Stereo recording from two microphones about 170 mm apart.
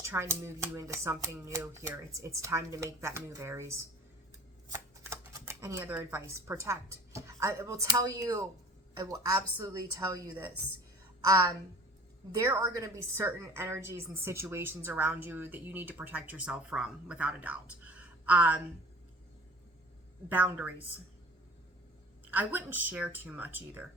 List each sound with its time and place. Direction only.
0.0 s a woman's voice: 15° right (ahead or behind)
12.4 s a woman's voice: 20° right (ahead or behind)
20.3 s a woman's voice: 10° right (ahead or behind)
22.3 s a woman's voice: 10° right (ahead or behind)